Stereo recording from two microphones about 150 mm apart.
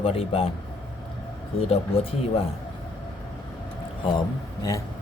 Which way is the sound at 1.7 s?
40° left (ahead or behind).